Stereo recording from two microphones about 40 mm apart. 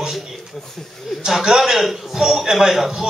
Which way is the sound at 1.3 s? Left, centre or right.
Centre.